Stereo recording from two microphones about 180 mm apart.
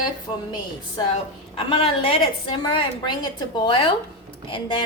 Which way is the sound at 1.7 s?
30° left (ahead or behind).